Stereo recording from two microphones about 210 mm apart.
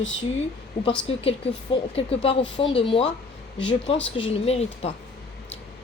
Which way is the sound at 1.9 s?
25° left (ahead or behind).